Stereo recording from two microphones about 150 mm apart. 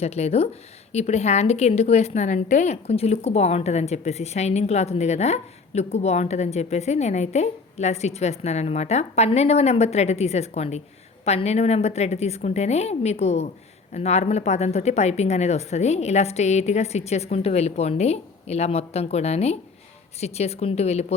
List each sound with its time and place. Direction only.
0.0 s a woman's voice: 45° left (ahead or behind)